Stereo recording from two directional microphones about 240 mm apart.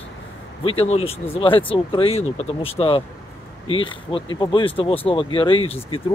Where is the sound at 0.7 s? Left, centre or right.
Left.